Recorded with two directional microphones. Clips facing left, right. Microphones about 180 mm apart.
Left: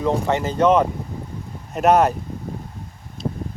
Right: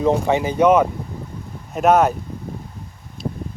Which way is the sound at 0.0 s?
15° right (ahead or behind).